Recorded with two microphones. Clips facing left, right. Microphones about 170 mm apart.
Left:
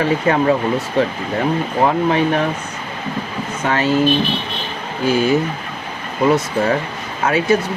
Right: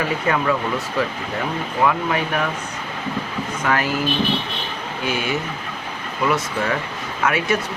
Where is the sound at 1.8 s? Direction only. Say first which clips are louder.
Left 4 dB; 30° left (ahead or behind).